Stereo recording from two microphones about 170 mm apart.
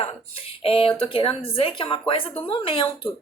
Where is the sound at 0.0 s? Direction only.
35° left (ahead or behind).